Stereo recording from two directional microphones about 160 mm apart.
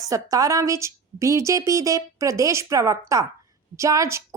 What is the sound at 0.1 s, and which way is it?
Speech, 20° right (ahead or behind).